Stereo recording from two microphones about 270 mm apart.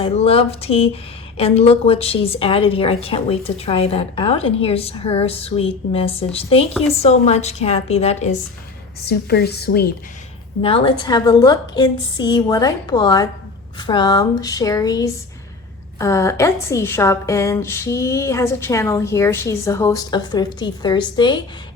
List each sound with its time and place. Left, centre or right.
0.0 s a woman's voice: left
9.0 s a woman's voice: left
10.6 s a woman's voice: centre